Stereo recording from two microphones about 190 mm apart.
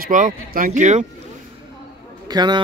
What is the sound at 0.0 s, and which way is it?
Speech, 45° right (ahead or behind).